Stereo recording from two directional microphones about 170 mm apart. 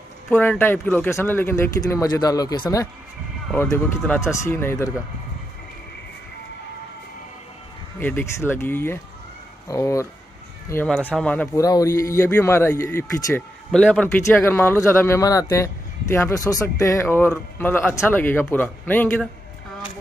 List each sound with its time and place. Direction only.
0.3 s speech: 10° left (ahead or behind)
3.6 s speech: 5° left (ahead or behind)
8.0 s speech: 10° left (ahead or behind)
11.5 s speech: 20° left (ahead or behind)
13.7 s speech: 5° left (ahead or behind)